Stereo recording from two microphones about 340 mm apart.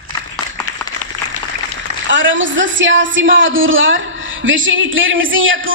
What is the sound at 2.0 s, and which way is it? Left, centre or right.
A woman's voice, right.